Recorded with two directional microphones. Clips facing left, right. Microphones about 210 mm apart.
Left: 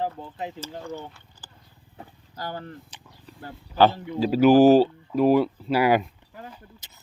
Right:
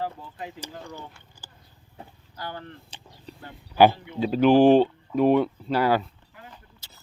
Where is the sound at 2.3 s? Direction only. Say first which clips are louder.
Left 3 dB; 40° left (ahead or behind).